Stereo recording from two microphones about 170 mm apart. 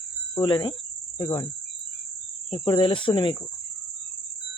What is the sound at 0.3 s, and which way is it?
Speech, 30° left (ahead or behind).